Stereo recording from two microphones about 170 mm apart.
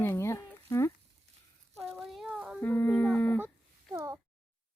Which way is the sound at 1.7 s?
Centre (ahead or behind).